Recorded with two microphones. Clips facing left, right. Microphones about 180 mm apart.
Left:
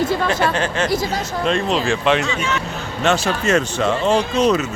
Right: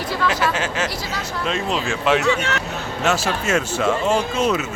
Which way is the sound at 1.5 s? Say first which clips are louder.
Left 5 dB; centre (ahead or behind).